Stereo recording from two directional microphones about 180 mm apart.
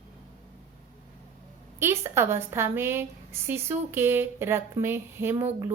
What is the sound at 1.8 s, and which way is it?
A woman's voice, 15° right (ahead or behind).